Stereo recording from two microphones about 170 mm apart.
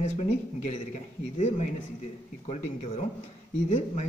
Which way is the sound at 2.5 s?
40° left (ahead or behind).